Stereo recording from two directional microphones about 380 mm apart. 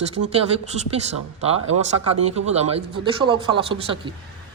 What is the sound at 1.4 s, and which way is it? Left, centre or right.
A man's voice, centre.